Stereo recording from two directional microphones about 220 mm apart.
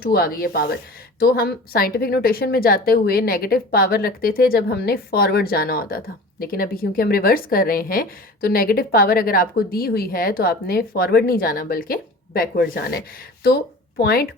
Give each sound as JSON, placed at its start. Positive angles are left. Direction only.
{"t": 0.0, "sound": "speech", "side_deg": 45}